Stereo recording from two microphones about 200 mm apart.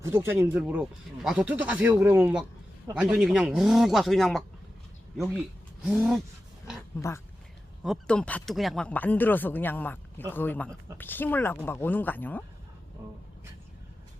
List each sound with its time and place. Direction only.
0.0 s speech: 10° right (ahead or behind)
5.8 s speech: 5° right (ahead or behind)
7.0 s speech: 15° left (ahead or behind)